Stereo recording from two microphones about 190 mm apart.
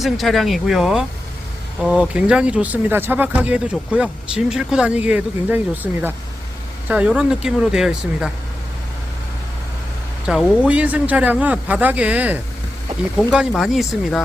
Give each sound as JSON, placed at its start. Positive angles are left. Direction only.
{"t": 0.0, "sound": "speech", "side_deg": 0}
{"t": 10.2, "sound": "speech", "side_deg": -5}